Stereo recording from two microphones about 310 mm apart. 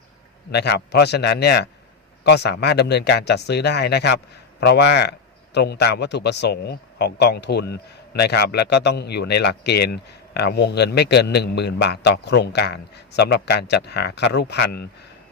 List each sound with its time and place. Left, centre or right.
0.5 s a man's voice: left